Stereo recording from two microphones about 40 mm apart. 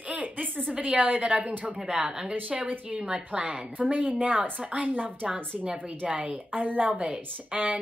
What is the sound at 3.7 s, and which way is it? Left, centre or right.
Speech, right.